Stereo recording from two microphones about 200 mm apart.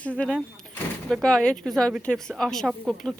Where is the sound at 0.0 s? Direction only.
5° left (ahead or behind).